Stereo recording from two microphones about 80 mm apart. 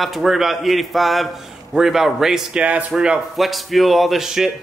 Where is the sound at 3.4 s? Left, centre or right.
Centre.